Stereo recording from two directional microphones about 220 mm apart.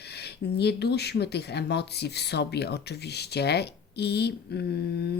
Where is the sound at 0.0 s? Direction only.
50° left (ahead or behind).